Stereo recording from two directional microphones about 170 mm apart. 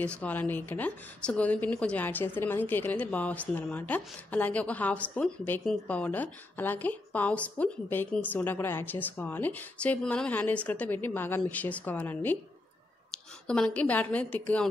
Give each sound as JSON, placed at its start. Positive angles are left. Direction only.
{"t": 0.0, "sound": "speech", "side_deg": 10}
{"t": 13.1, "sound": "a sound", "side_deg": 5}
{"t": 13.7, "sound": "speech", "side_deg": 10}